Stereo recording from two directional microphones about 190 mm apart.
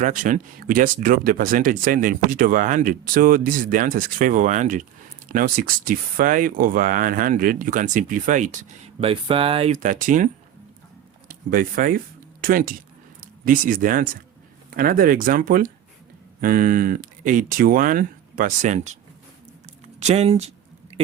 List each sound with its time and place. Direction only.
0.0 s speech: 45° right (ahead or behind)
11.3 s speech: 50° right (ahead or behind)
20.0 s speech: 35° right (ahead or behind)